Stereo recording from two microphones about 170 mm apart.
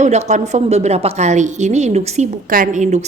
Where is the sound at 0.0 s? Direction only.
40° right (ahead or behind).